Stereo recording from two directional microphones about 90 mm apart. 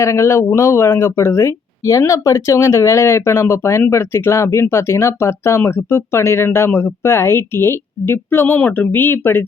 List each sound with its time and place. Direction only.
0.0 s speech: 30° left (ahead or behind)